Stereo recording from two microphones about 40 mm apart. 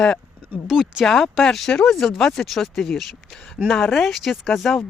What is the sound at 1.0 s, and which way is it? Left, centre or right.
Speech, centre.